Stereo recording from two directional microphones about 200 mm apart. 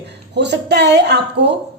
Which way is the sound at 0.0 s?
60° right (ahead or behind).